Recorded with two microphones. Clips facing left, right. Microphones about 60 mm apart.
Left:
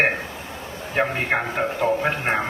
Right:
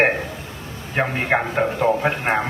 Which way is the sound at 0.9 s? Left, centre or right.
Centre.